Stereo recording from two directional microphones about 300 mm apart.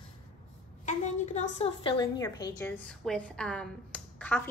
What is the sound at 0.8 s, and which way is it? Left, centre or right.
A woman's voice, left.